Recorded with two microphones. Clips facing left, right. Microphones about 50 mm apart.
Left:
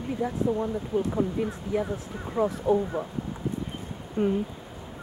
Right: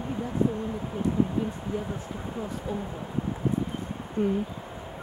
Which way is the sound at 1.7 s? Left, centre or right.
Left.